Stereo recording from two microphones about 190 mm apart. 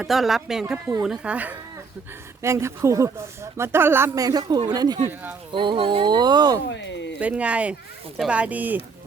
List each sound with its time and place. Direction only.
0.0 s speech: centre (ahead or behind); by 6.6 s 20° right (ahead or behind)
6.7 s speech: 70° left (ahead or behind)
7.2 s speech: 5° right (ahead or behind)